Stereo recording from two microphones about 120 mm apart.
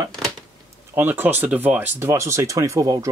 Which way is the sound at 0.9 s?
15° right (ahead or behind).